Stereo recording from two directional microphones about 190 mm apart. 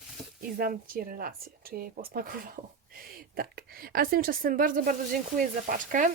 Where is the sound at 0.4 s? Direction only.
50° right (ahead or behind).